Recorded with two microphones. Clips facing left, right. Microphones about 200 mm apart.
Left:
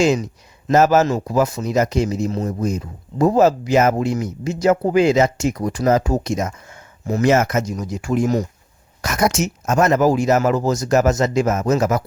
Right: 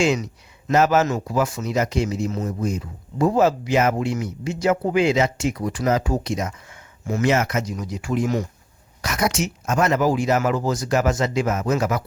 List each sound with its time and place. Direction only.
0.0 s speech: 40° left (ahead or behind)